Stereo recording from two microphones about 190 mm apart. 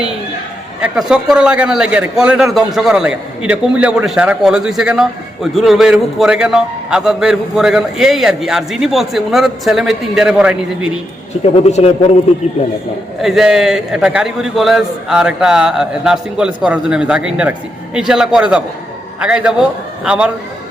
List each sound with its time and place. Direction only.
0.8 s a man's voice: 5° right (ahead or behind)
11.5 s a man's voice: 35° left (ahead or behind)
13.2 s a man's voice: centre (ahead or behind)